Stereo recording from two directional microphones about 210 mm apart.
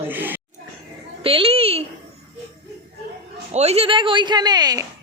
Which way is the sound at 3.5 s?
30° right (ahead or behind).